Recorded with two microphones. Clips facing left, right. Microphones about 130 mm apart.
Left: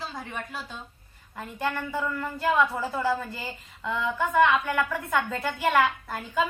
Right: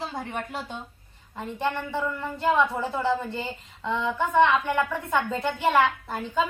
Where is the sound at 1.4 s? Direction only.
25° right (ahead or behind).